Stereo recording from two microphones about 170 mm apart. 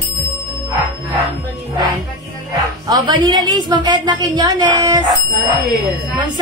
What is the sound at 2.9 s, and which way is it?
A woman's voice, 25° right (ahead or behind).